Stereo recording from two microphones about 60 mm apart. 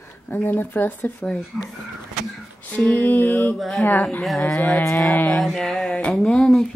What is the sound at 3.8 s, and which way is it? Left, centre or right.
Speech, left.